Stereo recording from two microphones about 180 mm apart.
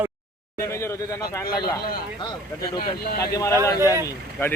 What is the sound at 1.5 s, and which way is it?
Speech, 55° left (ahead or behind).